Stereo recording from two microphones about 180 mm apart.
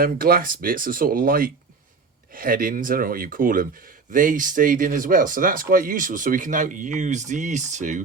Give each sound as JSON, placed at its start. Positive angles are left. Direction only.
{"t": 0.0, "sound": "speech", "side_deg": -55}